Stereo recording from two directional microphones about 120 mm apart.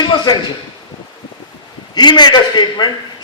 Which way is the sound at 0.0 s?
40° left (ahead or behind).